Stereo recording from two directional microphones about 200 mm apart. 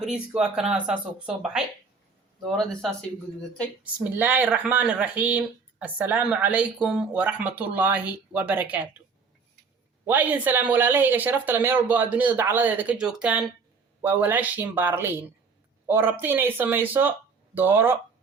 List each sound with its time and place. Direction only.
0.0 s speech: 5° right (ahead or behind)
3.9 s speech: 10° right (ahead or behind)
10.1 s speech: 10° right (ahead or behind)